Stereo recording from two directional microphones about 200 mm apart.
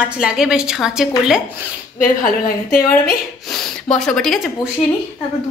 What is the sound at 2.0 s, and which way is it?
A woman's voice, 45° left (ahead or behind).